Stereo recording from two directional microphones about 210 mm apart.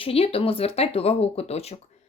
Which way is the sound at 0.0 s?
25° left (ahead or behind).